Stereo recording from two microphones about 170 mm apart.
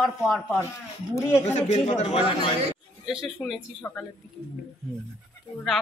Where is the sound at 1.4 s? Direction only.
40° left (ahead or behind).